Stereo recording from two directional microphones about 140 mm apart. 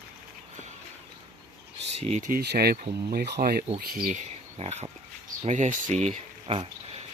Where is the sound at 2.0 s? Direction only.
50° right (ahead or behind).